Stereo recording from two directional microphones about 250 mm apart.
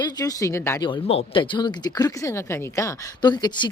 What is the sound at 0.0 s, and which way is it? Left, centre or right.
Speech, centre.